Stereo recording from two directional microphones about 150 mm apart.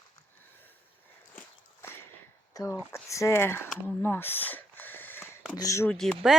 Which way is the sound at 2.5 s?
20° left (ahead or behind).